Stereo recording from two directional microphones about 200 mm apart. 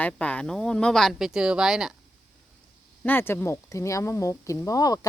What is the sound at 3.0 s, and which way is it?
Speech, 10° left (ahead or behind).